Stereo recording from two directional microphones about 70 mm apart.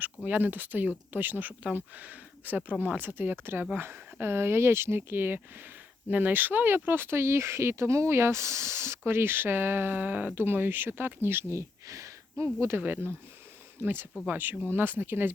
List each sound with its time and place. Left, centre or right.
0.3 s speech: right
11.5 s speech: right
12.8 s speech: right